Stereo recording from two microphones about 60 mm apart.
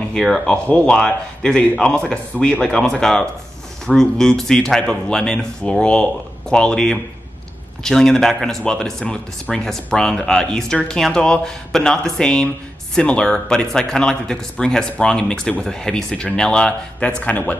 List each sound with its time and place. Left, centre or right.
0.1 s a man's voice: centre
0.7 s a man's voice: left
2.3 s speech: left
2.6 s a man's voice: centre
17.2 s speech: left